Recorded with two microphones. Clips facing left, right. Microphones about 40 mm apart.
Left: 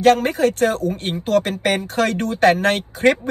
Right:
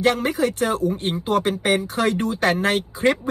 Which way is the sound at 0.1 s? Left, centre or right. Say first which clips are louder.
Left 5 dB; left.